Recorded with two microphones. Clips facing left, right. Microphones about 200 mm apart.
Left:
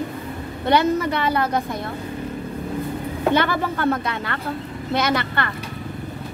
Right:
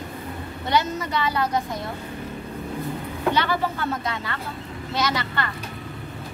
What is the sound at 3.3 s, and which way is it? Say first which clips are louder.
A woman's voice: left 3 dB; 55° left (ahead or behind).